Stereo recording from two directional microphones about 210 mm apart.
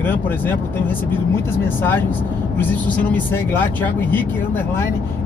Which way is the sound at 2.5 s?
10° left (ahead or behind).